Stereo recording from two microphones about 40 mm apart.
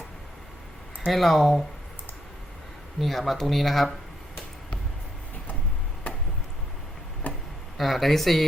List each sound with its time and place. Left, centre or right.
1.1 s speech: centre
3.0 s speech: centre
7.2 s a sound: left
7.8 s speech: centre